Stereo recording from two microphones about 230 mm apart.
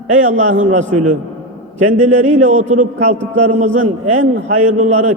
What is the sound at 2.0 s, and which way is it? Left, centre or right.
A man's voice, right.